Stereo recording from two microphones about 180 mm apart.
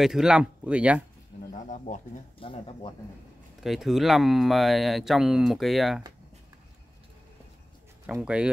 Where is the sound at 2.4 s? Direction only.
30° left (ahead or behind).